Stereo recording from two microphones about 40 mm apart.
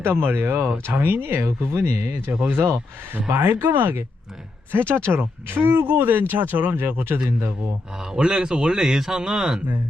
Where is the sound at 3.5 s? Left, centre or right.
Right.